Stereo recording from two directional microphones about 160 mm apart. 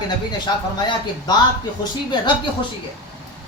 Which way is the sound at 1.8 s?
30° left (ahead or behind).